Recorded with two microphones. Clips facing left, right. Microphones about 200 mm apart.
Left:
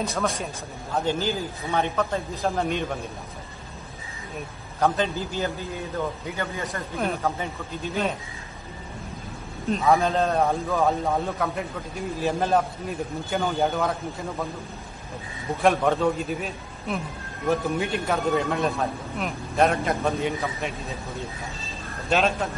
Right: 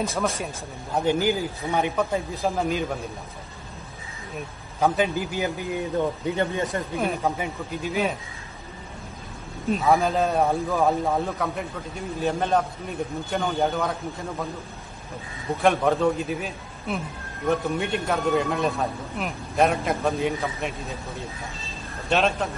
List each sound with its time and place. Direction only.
0.0 s a man's voice: centre (ahead or behind)
0.9 s a man's voice: 15° right (ahead or behind)
2.4 s a man's voice: centre (ahead or behind)
4.7 s a man's voice: centre (ahead or behind)
5.0 s a man's voice: 15° right (ahead or behind)
7.2 s a man's voice: 15° right (ahead or behind)
9.7 s a man's voice: centre (ahead or behind)
15.6 s a man's voice: centre (ahead or behind)
22.1 s a man's voice: centre (ahead or behind)